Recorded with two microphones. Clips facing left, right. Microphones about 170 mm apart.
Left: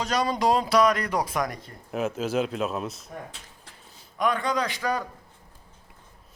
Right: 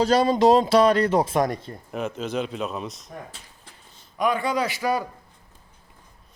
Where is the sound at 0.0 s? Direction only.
30° right (ahead or behind).